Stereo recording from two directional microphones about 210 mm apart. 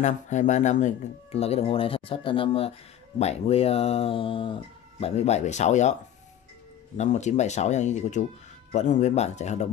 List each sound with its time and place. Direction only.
0.0 s speech: 35° left (ahead or behind)
7.0 s speech: 35° left (ahead or behind)